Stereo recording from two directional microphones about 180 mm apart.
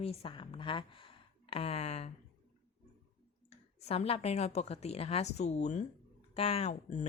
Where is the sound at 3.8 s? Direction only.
35° left (ahead or behind).